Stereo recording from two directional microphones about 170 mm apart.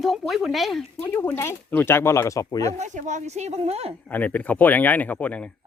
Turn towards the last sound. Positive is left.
turn(degrees=5)  # may be behind; listen again after turning